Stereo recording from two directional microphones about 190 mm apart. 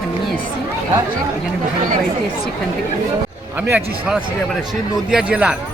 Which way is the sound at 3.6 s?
10° right (ahead or behind).